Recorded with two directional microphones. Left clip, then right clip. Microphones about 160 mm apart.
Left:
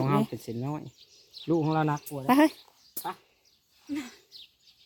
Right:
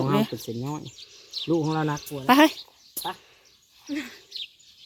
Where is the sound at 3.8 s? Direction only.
65° left (ahead or behind).